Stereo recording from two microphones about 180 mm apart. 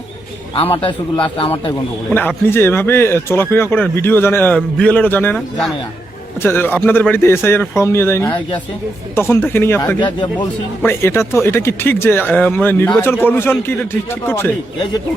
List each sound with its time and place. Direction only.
0.5 s a man's voice: 30° left (ahead or behind)
2.1 s speech: 10° left (ahead or behind)